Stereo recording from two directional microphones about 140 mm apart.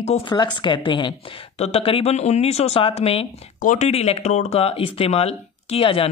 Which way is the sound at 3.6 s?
65° left (ahead or behind).